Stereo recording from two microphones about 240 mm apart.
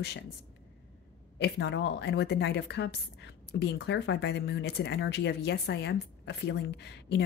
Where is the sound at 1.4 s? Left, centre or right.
Left.